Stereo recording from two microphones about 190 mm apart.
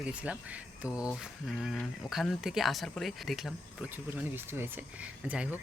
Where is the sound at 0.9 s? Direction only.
15° left (ahead or behind).